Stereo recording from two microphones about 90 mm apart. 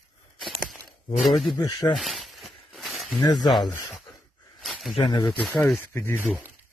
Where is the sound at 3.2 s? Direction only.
55° left (ahead or behind).